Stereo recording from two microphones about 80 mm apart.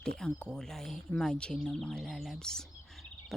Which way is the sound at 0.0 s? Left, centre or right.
Centre.